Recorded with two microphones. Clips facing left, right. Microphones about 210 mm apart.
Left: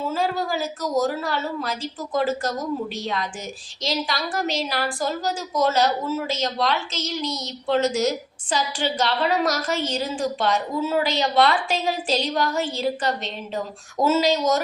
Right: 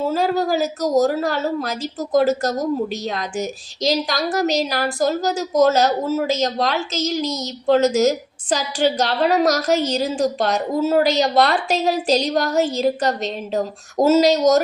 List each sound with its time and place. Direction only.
0.0 s a woman's voice: 40° right (ahead or behind)